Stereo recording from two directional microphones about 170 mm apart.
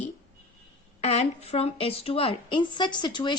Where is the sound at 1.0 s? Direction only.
40° left (ahead or behind).